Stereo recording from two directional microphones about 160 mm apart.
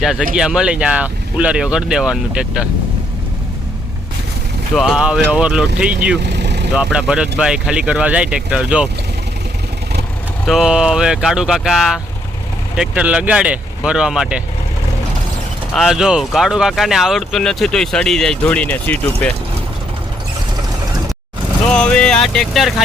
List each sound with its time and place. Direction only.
0.0 s speech: 5° right (ahead or behind)
4.7 s speech: centre (ahead or behind)
6.2 s vehicle: 90° right
6.7 s speech: 5° right (ahead or behind)
10.4 s speech: centre (ahead or behind)
15.7 s speech: centre (ahead or behind)
21.7 s speech: 5° left (ahead or behind)